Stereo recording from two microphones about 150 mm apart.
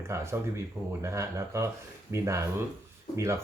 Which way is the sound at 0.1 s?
20° right (ahead or behind).